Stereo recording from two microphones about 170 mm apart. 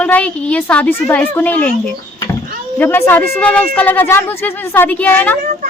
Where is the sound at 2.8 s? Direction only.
15° left (ahead or behind).